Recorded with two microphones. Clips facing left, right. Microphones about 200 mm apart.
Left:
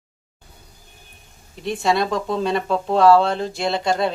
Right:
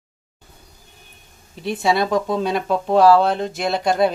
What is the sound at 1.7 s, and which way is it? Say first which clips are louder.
Speech: right 2 dB; 5° right (ahead or behind).